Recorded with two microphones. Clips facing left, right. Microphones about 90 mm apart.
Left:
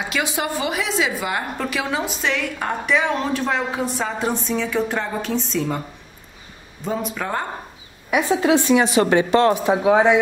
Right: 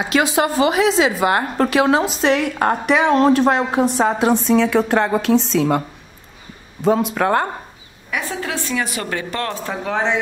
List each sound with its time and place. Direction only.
0.4 s speech: 85° right
0.8 s a woman's voice: 70° right (ahead or behind)
2.2 s a woman's voice: 45° right (ahead or behind)
2.9 s a woman's voice: 60° right (ahead or behind)
6.8 s a woman's voice: 85° right; by 7.4 s 65° right (ahead or behind)
8.1 s speech: 20° left (ahead or behind)